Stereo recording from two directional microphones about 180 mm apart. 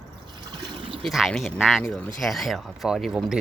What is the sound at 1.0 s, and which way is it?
Speech, centre (ahead or behind).